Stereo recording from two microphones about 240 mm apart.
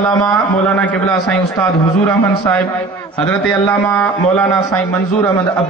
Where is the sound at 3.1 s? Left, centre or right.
Centre.